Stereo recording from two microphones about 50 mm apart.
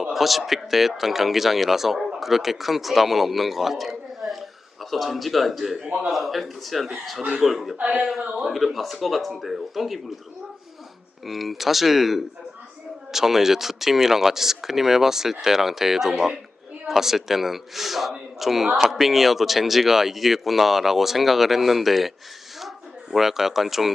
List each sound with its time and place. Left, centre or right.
0.0 s a man's voice: centre
7.8 s speech: right
8.4 s a man's voice: centre
11.3 s a man's voice: centre
23.1 s a man's voice: centre